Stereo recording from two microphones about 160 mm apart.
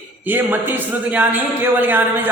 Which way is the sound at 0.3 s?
10° right (ahead or behind).